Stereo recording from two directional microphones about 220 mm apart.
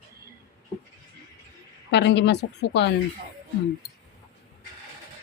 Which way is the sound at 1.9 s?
50° left (ahead or behind).